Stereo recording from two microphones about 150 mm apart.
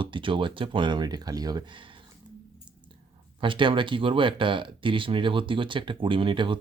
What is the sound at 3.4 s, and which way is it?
Speech, 35° right (ahead or behind).